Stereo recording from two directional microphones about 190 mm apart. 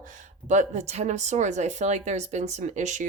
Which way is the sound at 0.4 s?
40° right (ahead or behind).